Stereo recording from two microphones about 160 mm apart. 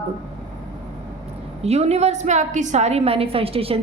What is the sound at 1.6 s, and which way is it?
A woman's voice, 40° right (ahead or behind).